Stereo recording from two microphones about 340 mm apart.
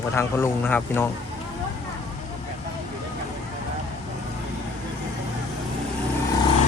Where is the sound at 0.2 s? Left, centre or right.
Centre.